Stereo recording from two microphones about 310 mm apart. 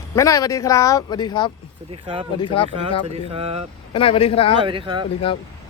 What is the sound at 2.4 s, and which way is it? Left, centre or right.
Speech, centre.